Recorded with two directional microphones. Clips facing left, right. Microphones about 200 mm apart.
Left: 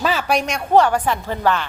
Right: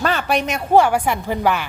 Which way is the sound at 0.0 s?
Centre (ahead or behind).